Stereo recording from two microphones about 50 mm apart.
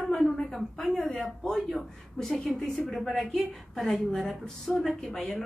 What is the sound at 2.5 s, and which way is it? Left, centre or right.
Speech, centre.